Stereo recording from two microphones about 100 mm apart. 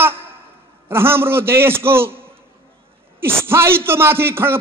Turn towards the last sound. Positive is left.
turn(degrees=-25)  # may be behind; listen again after turning